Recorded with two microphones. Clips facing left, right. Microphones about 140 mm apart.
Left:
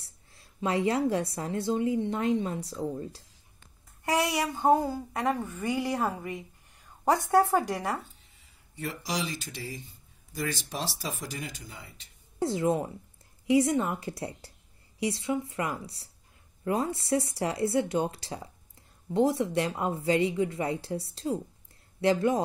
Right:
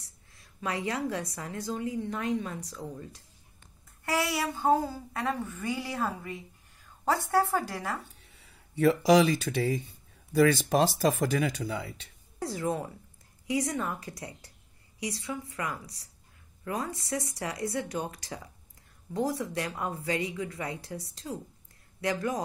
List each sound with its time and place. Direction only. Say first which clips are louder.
0.0 s a woman's voice: even; 30° left (ahead or behind)
4.0 s a woman's voice: left 2 dB; 20° left (ahead or behind)
8.2 s speech: right 5 dB; 70° right (ahead or behind)
12.4 s a woman's voice: left 5 dB; 25° left (ahead or behind)